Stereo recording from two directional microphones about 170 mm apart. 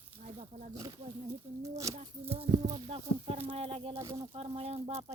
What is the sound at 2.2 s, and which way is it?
Speech, 35° right (ahead or behind).